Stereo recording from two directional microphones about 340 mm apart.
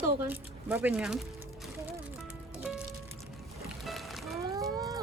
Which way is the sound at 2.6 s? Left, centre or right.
Centre.